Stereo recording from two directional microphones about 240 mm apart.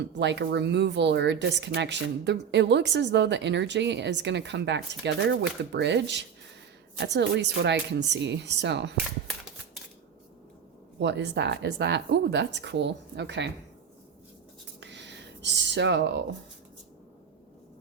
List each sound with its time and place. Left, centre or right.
0.0 s speech: right
11.0 s speech: right
14.8 s a sound: right